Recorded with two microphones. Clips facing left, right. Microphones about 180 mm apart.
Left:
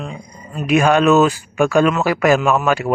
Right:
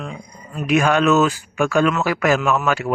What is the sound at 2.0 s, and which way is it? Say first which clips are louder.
Speech: left 3 dB; 15° left (ahead or behind).